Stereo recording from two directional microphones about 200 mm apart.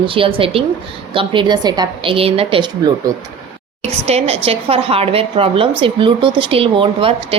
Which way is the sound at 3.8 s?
30° right (ahead or behind).